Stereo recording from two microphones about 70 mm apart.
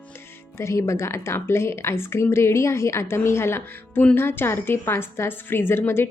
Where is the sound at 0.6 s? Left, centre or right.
Left.